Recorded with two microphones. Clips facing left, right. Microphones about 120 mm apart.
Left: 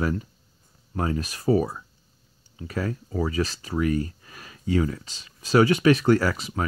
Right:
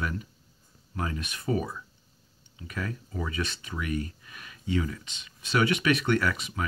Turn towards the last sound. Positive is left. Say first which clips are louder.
# left 5 dB
turn(degrees=35)  # may be behind; listen again after turning